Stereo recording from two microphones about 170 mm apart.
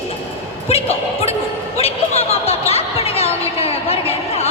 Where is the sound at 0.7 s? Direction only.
35° left (ahead or behind).